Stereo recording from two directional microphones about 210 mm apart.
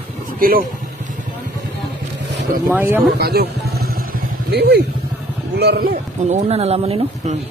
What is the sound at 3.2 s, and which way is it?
Vehicle, 50° right (ahead or behind).